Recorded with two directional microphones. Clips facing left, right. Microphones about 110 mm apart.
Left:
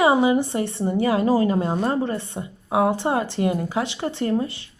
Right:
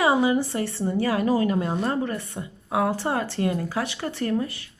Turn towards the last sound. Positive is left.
turn(degrees=25)  # may be behind; listen again after turning